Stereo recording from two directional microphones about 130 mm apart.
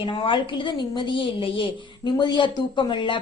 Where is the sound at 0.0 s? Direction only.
40° left (ahead or behind).